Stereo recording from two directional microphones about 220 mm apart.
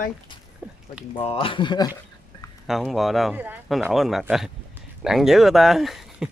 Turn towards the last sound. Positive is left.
turn(degrees=0)  # may be behind; listen again after turning